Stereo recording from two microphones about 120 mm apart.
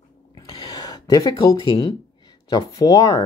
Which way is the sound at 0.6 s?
35° left (ahead or behind).